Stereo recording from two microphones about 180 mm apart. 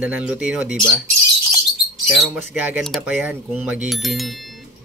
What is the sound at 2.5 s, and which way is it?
Speech, 10° right (ahead or behind).